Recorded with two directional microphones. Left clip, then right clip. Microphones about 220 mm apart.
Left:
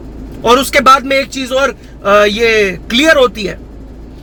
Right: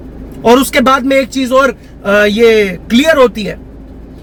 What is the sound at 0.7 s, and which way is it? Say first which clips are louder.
Speech: left 1 dB; 50° left (ahead or behind).